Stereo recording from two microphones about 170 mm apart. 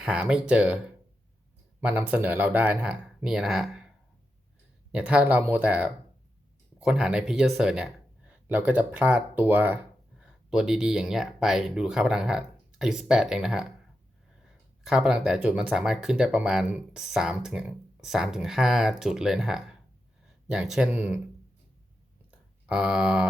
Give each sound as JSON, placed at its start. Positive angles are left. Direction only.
{"t": 0.0, "sound": "speech", "side_deg": -5}
{"t": 1.8, "sound": "speech", "side_deg": -5}
{"t": 4.9, "sound": "speech", "side_deg": -5}
{"t": 22.3, "sound": "a sound", "side_deg": -5}